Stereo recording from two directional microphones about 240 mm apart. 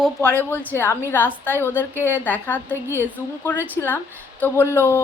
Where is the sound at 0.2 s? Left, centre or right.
Centre.